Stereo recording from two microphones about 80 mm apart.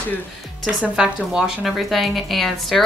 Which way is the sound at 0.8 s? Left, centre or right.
Centre.